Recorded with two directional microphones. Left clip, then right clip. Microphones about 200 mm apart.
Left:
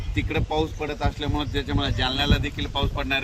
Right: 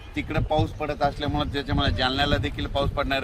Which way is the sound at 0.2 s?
20° right (ahead or behind).